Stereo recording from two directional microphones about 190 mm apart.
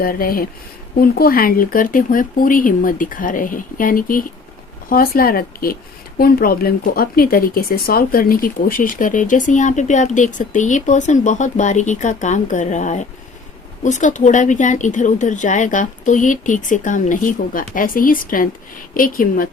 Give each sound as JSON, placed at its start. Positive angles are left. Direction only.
{"t": 0.0, "sound": "speech", "side_deg": 50}